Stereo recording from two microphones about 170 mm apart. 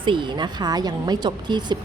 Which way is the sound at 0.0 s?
30° right (ahead or behind).